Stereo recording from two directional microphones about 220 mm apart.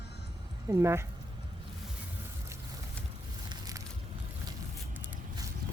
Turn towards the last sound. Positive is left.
turn(degrees=-15)  # may be behind; listen again after turning